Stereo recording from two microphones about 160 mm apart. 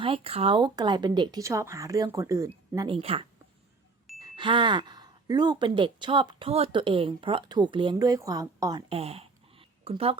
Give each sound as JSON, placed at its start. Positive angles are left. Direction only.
{"t": 0.0, "sound": "speech", "side_deg": -35}
{"t": 2.7, "sound": "speech", "side_deg": -30}
{"t": 8.9, "sound": "speech", "side_deg": -40}